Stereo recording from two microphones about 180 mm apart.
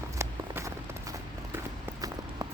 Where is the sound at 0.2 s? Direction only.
15° right (ahead or behind).